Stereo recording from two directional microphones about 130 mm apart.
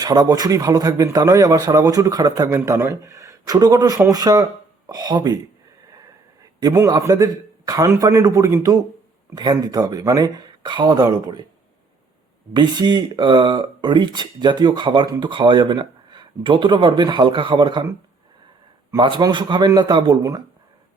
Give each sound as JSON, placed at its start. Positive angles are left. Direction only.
{"t": 0.0, "sound": "a man's voice", "side_deg": -30}
{"t": 6.4, "sound": "a man's voice", "side_deg": -30}
{"t": 12.5, "sound": "speech", "side_deg": -35}
{"t": 19.0, "sound": "speech", "side_deg": -40}